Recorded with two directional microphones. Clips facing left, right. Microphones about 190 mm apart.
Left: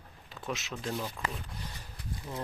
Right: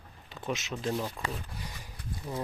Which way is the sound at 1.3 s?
10° right (ahead or behind).